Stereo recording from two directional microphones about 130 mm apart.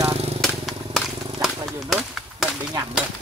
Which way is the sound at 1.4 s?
Centre (ahead or behind).